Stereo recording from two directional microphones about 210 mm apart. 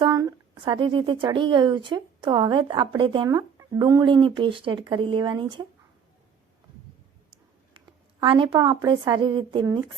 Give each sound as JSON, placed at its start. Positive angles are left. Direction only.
{"t": 0.0, "sound": "a woman's voice", "side_deg": -15}
{"t": 8.2, "sound": "a woman's voice", "side_deg": -25}